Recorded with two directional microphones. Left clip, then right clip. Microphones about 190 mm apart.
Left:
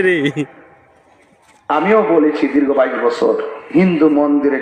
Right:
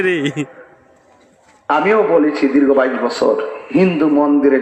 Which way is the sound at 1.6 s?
45° right (ahead or behind).